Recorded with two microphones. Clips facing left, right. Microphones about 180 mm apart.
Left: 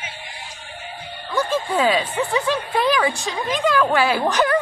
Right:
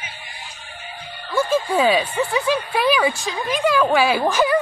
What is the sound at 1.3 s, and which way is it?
Speech, 10° right (ahead or behind).